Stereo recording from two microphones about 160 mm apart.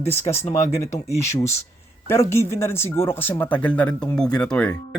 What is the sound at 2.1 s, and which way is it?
Speech, 15° left (ahead or behind).